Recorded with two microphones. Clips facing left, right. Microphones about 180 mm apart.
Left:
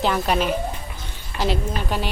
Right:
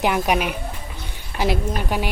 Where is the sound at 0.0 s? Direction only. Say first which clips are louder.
Right 1 dB; 10° right (ahead or behind).